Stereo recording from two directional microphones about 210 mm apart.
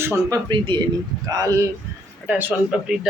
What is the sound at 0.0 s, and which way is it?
A man's voice, 15° right (ahead or behind).